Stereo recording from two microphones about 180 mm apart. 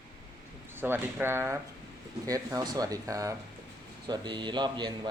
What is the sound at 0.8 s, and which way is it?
Speech, 10° right (ahead or behind).